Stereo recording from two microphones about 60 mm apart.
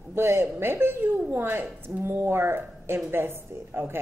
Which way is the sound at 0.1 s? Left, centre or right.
Right.